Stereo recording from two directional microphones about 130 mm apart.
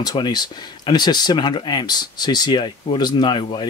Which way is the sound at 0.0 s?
30° left (ahead or behind).